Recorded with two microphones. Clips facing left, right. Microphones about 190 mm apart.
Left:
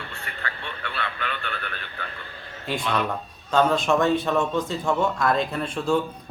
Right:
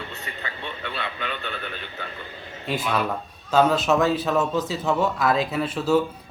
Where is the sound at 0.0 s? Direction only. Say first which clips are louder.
Right 1 dB; 20° right (ahead or behind).